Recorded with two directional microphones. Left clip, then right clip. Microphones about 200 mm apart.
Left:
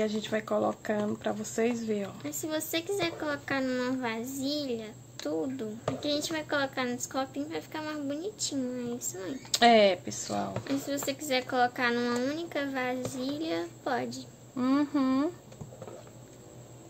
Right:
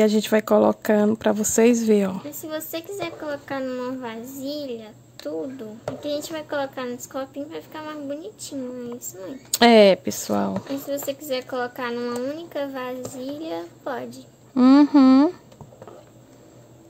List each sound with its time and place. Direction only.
0.0 s speech: 60° right (ahead or behind)
2.2 s speech: centre (ahead or behind)
9.5 s speech: 60° right (ahead or behind)
10.9 s speech: 5° right (ahead or behind)
14.5 s speech: 55° right (ahead or behind)